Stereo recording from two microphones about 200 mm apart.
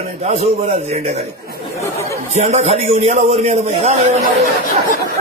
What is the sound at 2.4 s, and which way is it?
A man's voice, 35° right (ahead or behind).